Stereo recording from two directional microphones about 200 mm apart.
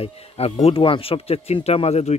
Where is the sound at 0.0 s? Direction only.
30° left (ahead or behind).